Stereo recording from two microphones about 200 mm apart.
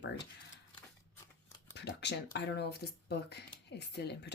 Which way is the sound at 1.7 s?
60° left (ahead or behind).